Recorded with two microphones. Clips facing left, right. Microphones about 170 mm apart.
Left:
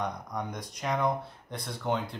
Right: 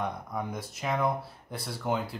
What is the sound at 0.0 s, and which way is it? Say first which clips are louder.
Speech: right 1 dB; 5° right (ahead or behind).